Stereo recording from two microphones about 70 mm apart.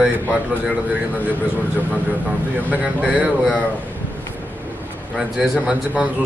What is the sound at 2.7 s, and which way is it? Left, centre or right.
Speech, centre.